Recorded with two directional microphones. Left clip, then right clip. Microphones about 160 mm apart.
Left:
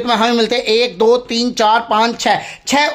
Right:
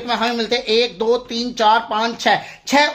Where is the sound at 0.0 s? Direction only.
45° left (ahead or behind).